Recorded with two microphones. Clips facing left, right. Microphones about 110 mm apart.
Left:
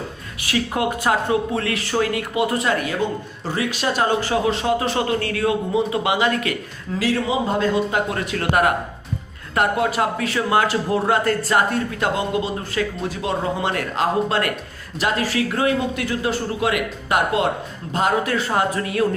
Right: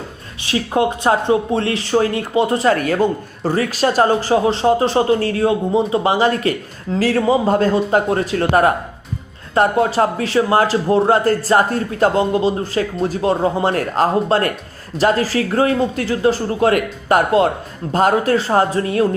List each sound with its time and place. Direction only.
0.4 s speech: 30° right (ahead or behind)
2.7 s speech: 45° right (ahead or behind)